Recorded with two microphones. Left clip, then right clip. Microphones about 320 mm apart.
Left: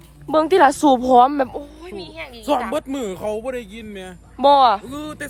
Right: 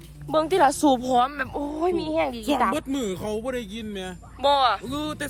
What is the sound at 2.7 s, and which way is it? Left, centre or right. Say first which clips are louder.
Speech: left 4 dB; centre.